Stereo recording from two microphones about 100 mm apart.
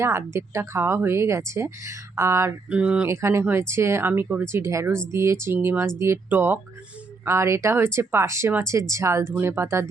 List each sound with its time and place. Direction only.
0.0 s speech: 25° right (ahead or behind)
2.6 s speech: 10° right (ahead or behind)
3.1 s speech: 25° right (ahead or behind)